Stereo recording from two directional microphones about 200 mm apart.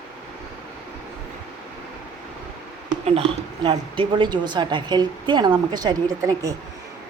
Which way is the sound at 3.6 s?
25° right (ahead or behind).